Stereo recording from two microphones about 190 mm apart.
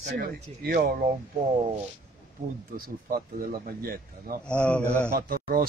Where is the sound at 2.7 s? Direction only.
50° right (ahead or behind).